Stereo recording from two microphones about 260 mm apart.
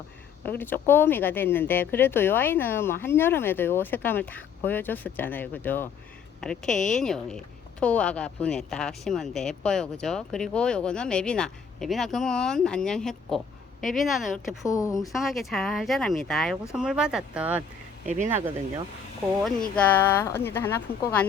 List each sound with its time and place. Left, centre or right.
0.4 s a woman's voice: centre
14.6 s speech: centre
15.1 s a woman's voice: centre
18.0 s speech: right
18.3 s speech: centre
19.4 s speech: centre